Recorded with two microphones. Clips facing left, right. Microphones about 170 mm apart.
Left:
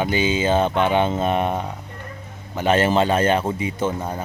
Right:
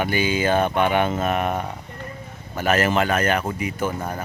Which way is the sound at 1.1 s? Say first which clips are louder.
Left 2 dB; 30° left (ahead or behind).